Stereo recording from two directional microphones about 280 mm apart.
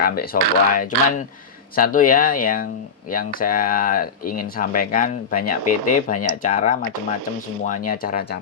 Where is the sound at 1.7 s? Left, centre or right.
Left.